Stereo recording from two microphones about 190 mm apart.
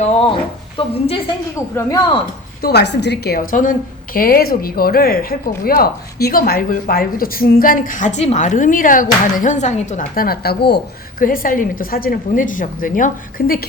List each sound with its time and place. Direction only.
0.0 s a woman's voice: 30° left (ahead or behind)
2.6 s a woman's voice: 55° left (ahead or behind)
11.2 s a woman's voice: 45° left (ahead or behind)